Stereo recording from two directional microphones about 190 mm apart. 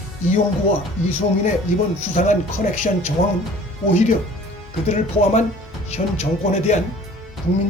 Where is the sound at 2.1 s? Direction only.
40° left (ahead or behind).